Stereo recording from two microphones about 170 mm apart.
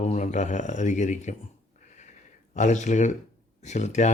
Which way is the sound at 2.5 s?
45° left (ahead or behind).